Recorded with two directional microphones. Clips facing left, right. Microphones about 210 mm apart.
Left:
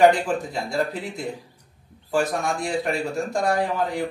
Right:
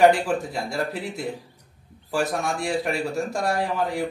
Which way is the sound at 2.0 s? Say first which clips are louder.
Left 2 dB; centre (ahead or behind).